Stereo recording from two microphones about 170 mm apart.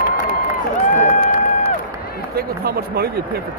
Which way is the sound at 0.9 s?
50° left (ahead or behind).